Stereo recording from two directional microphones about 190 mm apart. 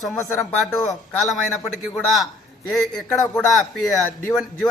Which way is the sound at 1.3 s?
Centre (ahead or behind).